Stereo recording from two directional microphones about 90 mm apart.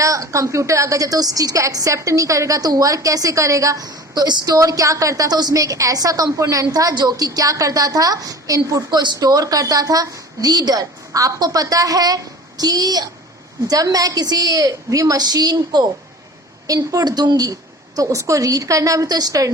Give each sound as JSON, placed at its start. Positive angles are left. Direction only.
{"t": 0.0, "sound": "a woman's voice", "side_deg": -35}